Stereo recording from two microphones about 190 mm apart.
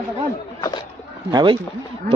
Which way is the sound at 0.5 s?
20° left (ahead or behind).